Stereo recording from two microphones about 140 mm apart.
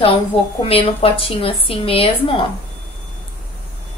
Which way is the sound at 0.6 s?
45° left (ahead or behind).